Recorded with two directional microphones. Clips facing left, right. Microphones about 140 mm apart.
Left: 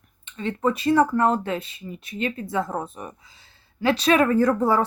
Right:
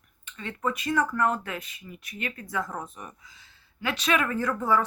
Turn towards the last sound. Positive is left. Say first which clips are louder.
# left 6 dB
turn(degrees=35)  # may be behind; listen again after turning